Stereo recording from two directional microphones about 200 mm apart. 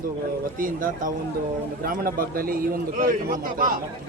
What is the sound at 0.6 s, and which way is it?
A man's voice, 45° right (ahead or behind).